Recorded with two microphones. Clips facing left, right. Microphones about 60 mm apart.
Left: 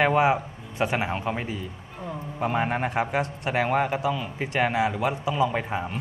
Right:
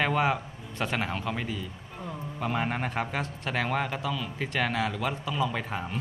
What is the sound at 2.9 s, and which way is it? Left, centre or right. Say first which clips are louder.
A man's voice: left 6 dB; centre.